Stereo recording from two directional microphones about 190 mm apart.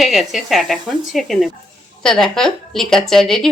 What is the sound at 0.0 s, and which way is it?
A woman's voice, centre (ahead or behind).